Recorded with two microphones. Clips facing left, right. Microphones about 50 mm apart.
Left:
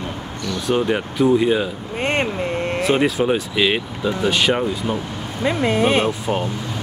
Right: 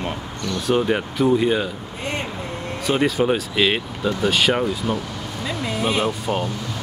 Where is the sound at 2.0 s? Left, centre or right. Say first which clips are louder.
Left 7 dB; left.